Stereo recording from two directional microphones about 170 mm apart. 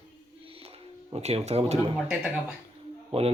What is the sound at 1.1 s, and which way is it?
Speech, 35° right (ahead or behind).